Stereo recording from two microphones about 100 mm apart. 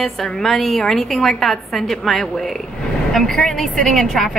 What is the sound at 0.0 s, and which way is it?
A woman's voice, 5° left (ahead or behind).